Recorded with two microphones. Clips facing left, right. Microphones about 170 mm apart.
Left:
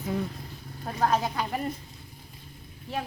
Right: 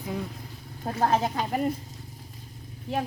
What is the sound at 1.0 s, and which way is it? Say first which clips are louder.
Speech: right 1 dB; 25° right (ahead or behind).